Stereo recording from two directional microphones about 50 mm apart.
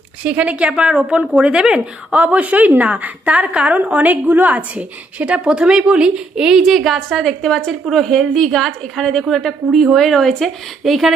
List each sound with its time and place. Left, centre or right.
0.3 s a woman's voice: right; by 11.1 s centre